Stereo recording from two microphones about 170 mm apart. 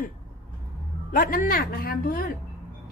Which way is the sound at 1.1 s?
55° left (ahead or behind).